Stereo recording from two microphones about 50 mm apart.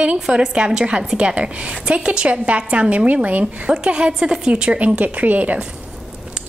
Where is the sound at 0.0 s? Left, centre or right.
Centre.